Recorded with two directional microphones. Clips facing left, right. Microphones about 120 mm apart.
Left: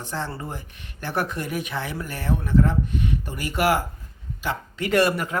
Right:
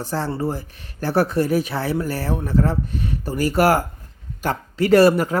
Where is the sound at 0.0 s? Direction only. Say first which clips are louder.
Right 7 dB; 35° right (ahead or behind).